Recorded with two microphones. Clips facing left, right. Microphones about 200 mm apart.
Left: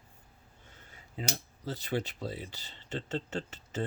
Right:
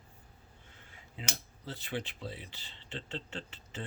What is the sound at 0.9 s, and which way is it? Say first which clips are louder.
Speech: left 6 dB; 40° left (ahead or behind).